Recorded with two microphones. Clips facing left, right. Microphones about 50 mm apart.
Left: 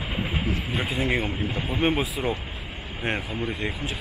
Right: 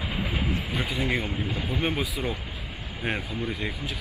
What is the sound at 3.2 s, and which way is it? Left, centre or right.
Speech, left.